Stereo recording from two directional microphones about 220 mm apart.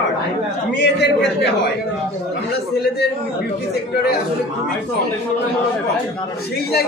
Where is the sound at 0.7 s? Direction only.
50° left (ahead or behind).